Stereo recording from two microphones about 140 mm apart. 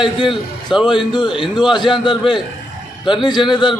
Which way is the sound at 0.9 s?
35° left (ahead or behind).